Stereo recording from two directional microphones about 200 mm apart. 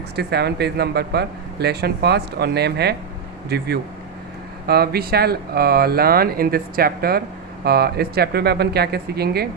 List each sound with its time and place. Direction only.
0.2 s speech: 55° right (ahead or behind)